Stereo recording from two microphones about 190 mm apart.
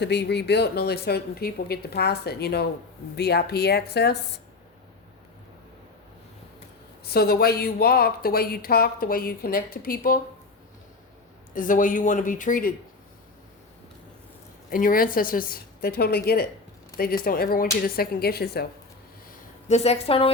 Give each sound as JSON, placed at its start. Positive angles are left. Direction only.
{"t": 0.0, "sound": "speech", "side_deg": 65}
{"t": 7.0, "sound": "speech", "side_deg": 55}
{"t": 11.5, "sound": "speech", "side_deg": 45}
{"t": 14.7, "sound": "speech", "side_deg": 45}
{"t": 19.3, "sound": "speech", "side_deg": 35}